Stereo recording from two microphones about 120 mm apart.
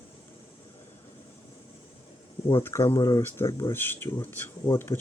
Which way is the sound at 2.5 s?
20° left (ahead or behind).